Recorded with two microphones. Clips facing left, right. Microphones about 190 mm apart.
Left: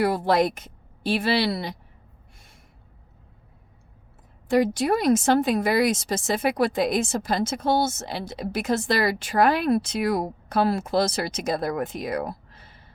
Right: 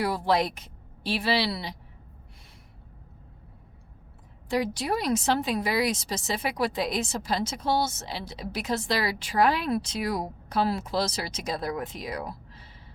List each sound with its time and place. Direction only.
0.0 s speech: 50° left (ahead or behind)
4.4 s speech: 50° left (ahead or behind)